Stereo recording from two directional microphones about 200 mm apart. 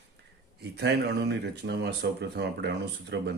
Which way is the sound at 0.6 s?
55° right (ahead or behind).